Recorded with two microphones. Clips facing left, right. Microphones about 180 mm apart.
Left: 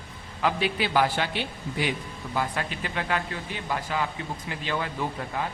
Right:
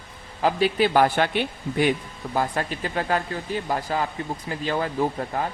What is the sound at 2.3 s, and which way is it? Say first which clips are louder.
Speech: right 4 dB; 40° right (ahead or behind).